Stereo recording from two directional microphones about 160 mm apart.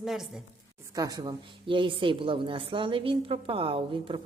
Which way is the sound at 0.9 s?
25° right (ahead or behind).